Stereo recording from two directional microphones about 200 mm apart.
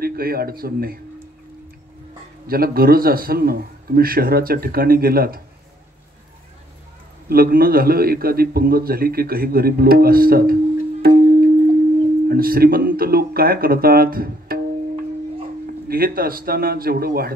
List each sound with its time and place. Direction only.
0.0 s a man's voice: 50° right (ahead or behind)
2.4 s a man's voice: 50° right (ahead or behind)
7.2 s a man's voice: 50° right (ahead or behind)
15.9 s a man's voice: 50° right (ahead or behind)